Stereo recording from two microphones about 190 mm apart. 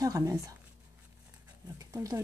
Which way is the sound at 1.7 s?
15° right (ahead or behind).